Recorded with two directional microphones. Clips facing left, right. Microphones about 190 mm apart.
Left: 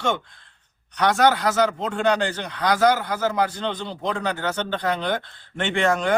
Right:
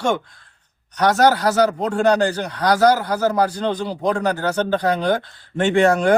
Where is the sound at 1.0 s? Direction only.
35° right (ahead or behind).